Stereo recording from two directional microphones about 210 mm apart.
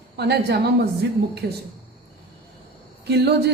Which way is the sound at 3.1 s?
50° right (ahead or behind).